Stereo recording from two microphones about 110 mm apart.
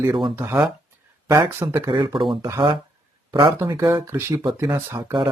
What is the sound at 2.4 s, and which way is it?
Speech, 25° right (ahead or behind).